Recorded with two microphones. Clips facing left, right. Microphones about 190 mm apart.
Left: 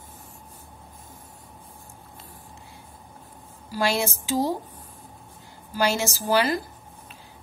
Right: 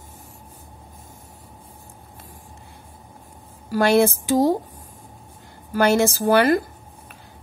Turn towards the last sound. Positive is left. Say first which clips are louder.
# right 6 dB
turn(degrees=-60)  # may be behind; listen again after turning